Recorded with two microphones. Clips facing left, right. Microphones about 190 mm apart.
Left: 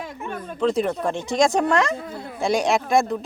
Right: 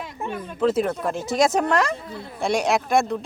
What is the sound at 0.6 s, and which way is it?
Speech, 5° right (ahead or behind).